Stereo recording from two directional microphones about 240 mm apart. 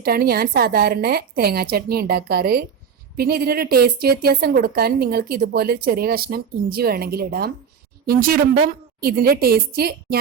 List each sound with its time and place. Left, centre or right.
0.0 s a woman's voice: right